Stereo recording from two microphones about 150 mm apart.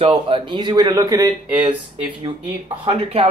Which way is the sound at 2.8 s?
40° right (ahead or behind).